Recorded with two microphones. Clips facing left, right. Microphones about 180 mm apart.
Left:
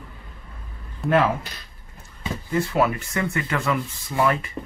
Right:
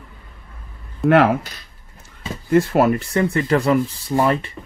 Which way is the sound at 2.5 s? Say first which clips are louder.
Right 7 dB; 50° right (ahead or behind).